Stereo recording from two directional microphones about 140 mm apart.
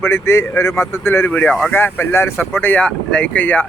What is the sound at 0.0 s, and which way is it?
Speech, 15° left (ahead or behind).